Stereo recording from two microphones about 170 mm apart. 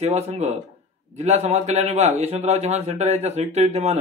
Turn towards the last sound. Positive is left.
turn(degrees=-40)  # may be behind; listen again after turning